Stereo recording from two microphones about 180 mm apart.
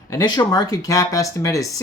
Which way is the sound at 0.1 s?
25° left (ahead or behind).